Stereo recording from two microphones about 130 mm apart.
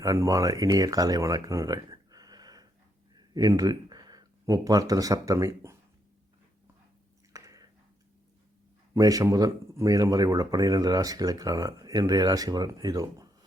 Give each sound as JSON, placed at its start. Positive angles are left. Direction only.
{"t": 0.0, "sound": "speech", "side_deg": -25}
{"t": 7.3, "sound": "chewing", "side_deg": -25}
{"t": 9.0, "sound": "speech", "side_deg": -25}